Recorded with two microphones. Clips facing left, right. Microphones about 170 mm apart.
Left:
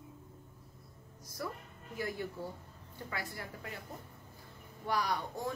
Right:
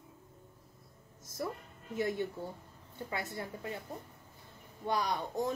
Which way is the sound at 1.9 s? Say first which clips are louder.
Right 5 dB; 25° right (ahead or behind).